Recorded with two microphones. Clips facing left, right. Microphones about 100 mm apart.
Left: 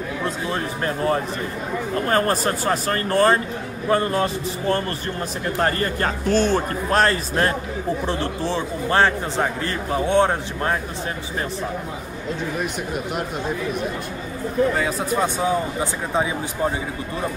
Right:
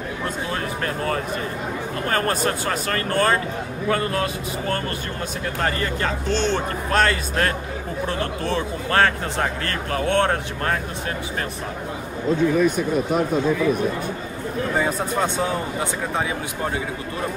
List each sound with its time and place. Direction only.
0.5 s a man's voice: 25° left (ahead or behind)
5.6 s a man's voice: 40° left (ahead or behind); by 10.8 s 15° left (ahead or behind)